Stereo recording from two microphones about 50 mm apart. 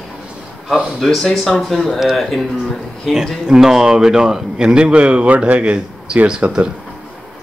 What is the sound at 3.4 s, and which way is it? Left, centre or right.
A man's voice, centre.